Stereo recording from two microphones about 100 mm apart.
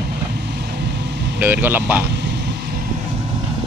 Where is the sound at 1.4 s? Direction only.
20° right (ahead or behind).